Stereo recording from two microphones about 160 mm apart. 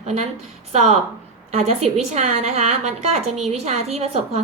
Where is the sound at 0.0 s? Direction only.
40° right (ahead or behind).